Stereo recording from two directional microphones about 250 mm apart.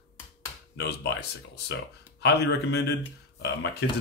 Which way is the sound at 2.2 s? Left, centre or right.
Left.